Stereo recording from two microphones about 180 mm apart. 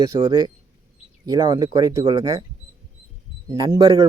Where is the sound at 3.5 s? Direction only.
20° right (ahead or behind).